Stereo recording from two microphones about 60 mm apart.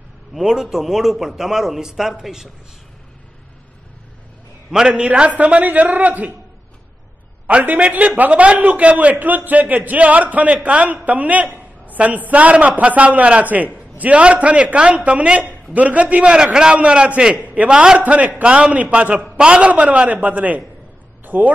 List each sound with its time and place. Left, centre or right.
0.3 s a man's voice: centre
4.6 s a man's voice: centre
7.4 s a man's voice: right